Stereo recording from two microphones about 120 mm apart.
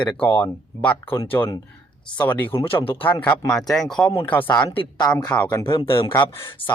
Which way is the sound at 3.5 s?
Centre (ahead or behind).